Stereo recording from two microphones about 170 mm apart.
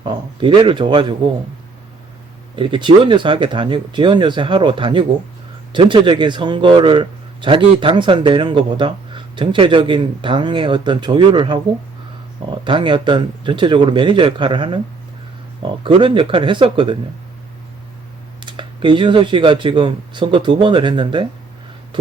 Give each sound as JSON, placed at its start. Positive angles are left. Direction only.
{"t": 0.0, "sound": "a man's voice", "side_deg": -30}
{"t": 2.6, "sound": "a man's voice", "side_deg": -30}
{"t": 12.6, "sound": "a man's voice", "side_deg": -30}
{"t": 18.4, "sound": "a man's voice", "side_deg": -30}